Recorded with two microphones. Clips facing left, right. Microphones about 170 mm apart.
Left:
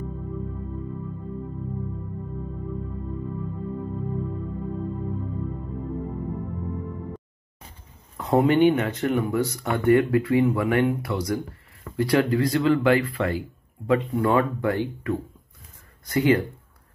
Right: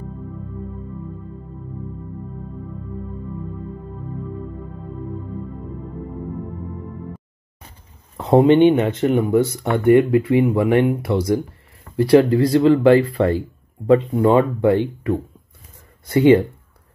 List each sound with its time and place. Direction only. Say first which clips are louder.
8.2 s speech: right 6 dB; 25° right (ahead or behind)
14.1 s speech: right 6 dB; 20° right (ahead or behind)